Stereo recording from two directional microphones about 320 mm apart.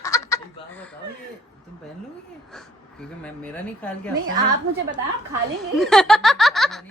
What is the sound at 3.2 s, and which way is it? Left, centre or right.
Speech, centre.